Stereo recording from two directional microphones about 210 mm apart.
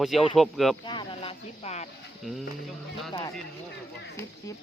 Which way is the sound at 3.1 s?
25° left (ahead or behind).